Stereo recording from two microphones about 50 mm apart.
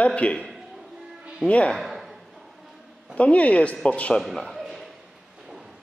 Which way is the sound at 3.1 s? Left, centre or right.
Left.